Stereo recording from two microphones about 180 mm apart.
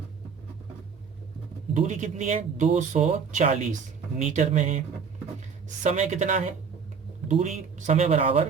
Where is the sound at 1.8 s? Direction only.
45° right (ahead or behind).